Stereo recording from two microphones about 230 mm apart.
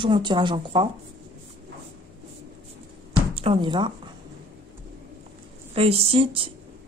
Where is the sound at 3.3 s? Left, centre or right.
Right.